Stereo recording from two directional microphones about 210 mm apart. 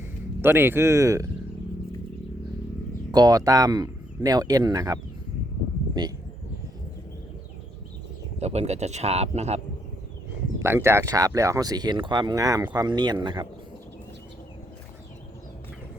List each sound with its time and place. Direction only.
0.4 s speech: 10° right (ahead or behind)
3.1 s speech: 20° right (ahead or behind)
6.0 s speech: 20° right (ahead or behind)
8.4 s speech: 30° right (ahead or behind)
10.6 s speech: 10° right (ahead or behind)